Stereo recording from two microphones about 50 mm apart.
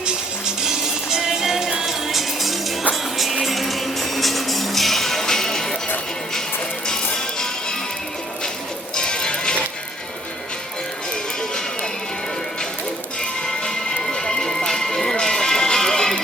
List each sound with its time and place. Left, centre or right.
0.0 s music: centre
6.8 s music: centre
9.0 s music: centre
13.4 s music: centre